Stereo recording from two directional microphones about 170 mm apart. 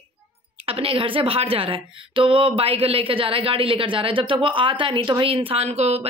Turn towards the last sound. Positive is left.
turn(degrees=-40)  # may be behind; listen again after turning